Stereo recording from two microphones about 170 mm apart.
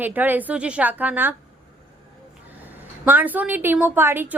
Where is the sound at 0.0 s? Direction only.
10° right (ahead or behind).